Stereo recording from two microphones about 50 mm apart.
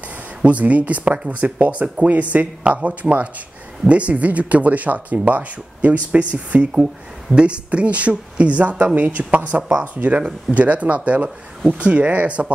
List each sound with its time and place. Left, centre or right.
0.4 s speech: right
9.6 s speech: centre
9.9 s speech: right